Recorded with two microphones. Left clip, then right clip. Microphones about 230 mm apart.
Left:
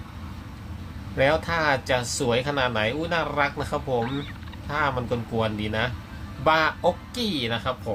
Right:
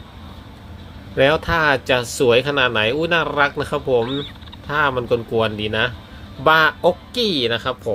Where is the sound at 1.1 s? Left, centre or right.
Right.